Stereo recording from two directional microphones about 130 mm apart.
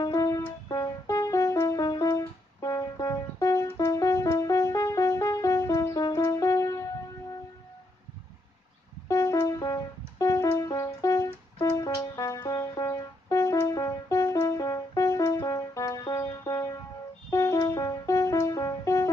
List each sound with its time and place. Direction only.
0.0 s music: 25° left (ahead or behind)
9.1 s music: 25° left (ahead or behind)